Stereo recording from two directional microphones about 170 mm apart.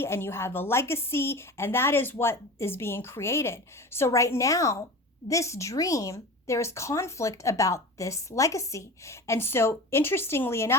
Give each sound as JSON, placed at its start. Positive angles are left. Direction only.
{"t": 0.0, "sound": "speech", "side_deg": 15}